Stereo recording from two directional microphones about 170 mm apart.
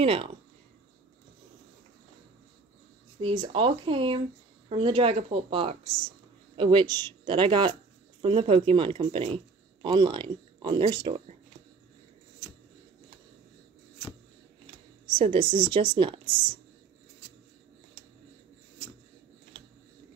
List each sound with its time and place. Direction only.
0.0 s speech: 30° right (ahead or behind)
3.2 s speech: 30° right (ahead or behind)
15.0 s speech: 30° right (ahead or behind)